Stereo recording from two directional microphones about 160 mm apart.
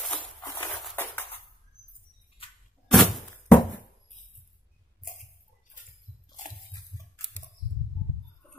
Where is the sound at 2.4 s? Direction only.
35° left (ahead or behind).